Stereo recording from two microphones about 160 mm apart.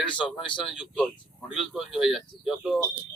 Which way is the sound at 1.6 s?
Centre (ahead or behind).